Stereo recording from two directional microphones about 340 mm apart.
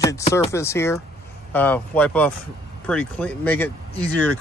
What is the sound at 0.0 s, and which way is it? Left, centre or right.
Speech, centre.